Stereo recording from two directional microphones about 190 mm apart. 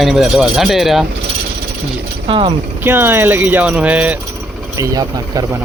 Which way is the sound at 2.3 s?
30° right (ahead or behind).